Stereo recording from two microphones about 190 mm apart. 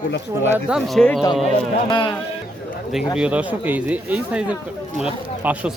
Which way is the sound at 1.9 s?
25° left (ahead or behind).